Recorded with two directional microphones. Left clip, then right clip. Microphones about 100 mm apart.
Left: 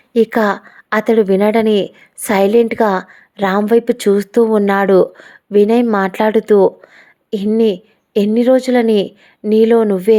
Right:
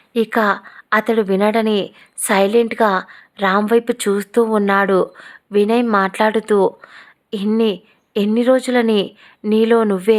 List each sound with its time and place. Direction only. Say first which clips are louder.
0.1 s a woman's voice: left 3 dB; 40° left (ahead or behind)
6.4 s speech: left 5 dB; 35° left (ahead or behind)